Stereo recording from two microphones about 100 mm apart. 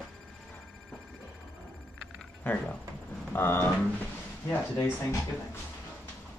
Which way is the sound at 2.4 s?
15° left (ahead or behind).